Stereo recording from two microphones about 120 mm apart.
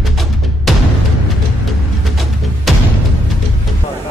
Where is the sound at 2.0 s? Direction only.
Centre (ahead or behind).